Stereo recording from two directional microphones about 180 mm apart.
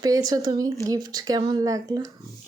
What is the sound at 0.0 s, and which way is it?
Speech, 20° right (ahead or behind).